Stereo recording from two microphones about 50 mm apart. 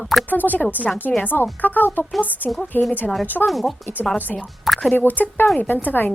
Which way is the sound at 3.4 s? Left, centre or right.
Centre.